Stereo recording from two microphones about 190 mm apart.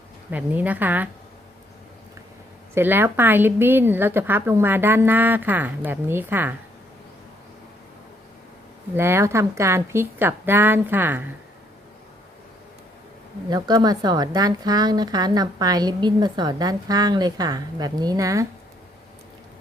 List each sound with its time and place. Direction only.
0.3 s a woman's voice: 10° right (ahead or behind)
2.7 s a woman's voice: 10° right (ahead or behind)
9.0 s a woman's voice: 15° right (ahead or behind)
13.5 s speech: 20° right (ahead or behind)